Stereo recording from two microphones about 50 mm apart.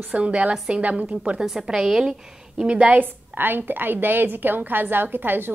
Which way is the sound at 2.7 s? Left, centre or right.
Right.